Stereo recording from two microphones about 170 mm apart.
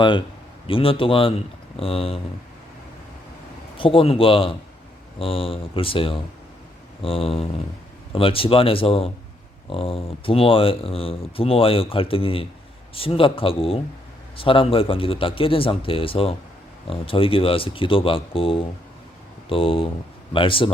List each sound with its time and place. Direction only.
0.0 s speech: 30° left (ahead or behind)
3.8 s speech: 30° left (ahead or behind)